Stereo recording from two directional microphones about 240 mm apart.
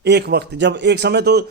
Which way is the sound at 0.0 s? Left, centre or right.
Right.